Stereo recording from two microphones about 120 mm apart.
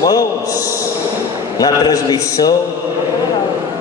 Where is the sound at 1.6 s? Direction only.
35° left (ahead or behind).